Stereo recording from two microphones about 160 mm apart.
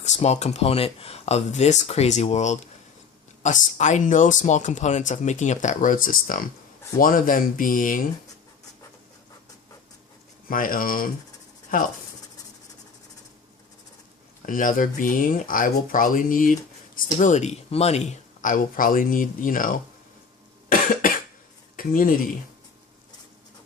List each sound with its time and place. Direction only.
0.0 s speech: 45° left (ahead or behind)
10.5 s speech: 60° left (ahead or behind)
14.4 s speech: 55° left (ahead or behind)
20.7 s cough: 60° left (ahead or behind)
21.8 s speech: 60° left (ahead or behind)